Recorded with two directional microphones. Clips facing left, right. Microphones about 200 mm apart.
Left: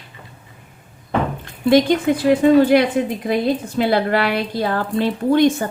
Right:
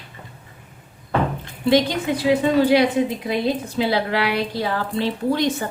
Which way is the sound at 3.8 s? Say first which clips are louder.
Left 3 dB; 50° left (ahead or behind).